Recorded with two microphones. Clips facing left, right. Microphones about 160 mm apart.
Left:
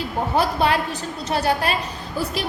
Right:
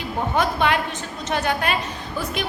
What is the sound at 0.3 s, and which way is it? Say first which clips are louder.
A woman's voice: left 1 dB; 35° left (ahead or behind).